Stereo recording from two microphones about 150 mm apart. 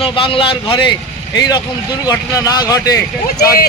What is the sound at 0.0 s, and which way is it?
Speech, 35° left (ahead or behind).